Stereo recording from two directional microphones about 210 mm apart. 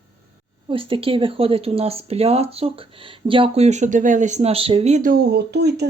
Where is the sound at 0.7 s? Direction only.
25° right (ahead or behind).